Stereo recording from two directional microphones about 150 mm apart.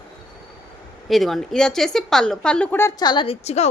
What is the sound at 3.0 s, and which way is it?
Speech, 30° left (ahead or behind).